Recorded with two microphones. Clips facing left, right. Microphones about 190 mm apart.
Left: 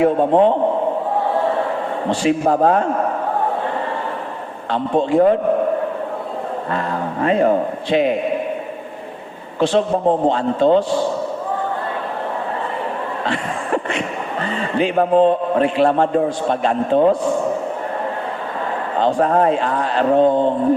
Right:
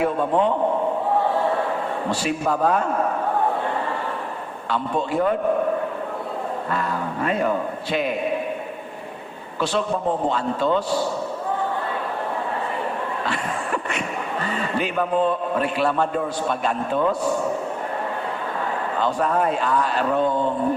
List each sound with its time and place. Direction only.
0.0 s a man's voice: 30° left (ahead or behind)
2.0 s speech: 30° left (ahead or behind)
4.7 s a man's voice: 30° left (ahead or behind)
6.7 s a man's voice: 30° left (ahead or behind)
9.6 s a man's voice: 25° left (ahead or behind)
13.2 s a sound: 30° left (ahead or behind)
15.1 s a man's voice: 30° left (ahead or behind)
18.9 s a man's voice: 30° left (ahead or behind)